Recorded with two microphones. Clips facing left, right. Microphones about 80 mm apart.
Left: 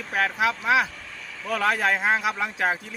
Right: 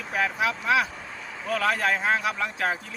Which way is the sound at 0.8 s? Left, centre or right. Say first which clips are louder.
Right 2 dB; right.